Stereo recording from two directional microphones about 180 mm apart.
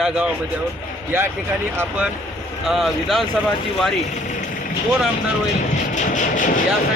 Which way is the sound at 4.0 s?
40° left (ahead or behind).